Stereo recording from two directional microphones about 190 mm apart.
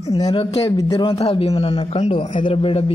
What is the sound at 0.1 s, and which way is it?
Speech, 20° left (ahead or behind).